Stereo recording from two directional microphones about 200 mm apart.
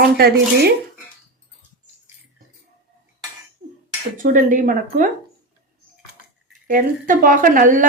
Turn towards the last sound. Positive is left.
turn(degrees=-40)  # may be behind; listen again after turning